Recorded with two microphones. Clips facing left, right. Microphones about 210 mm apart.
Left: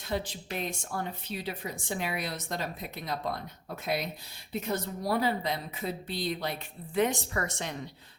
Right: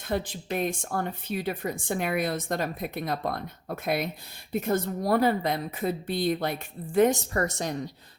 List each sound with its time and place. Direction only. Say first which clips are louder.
0.1 s a woman's voice: right 4 dB; 55° right (ahead or behind)